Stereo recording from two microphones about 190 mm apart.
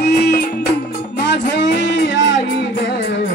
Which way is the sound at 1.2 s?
65° left (ahead or behind).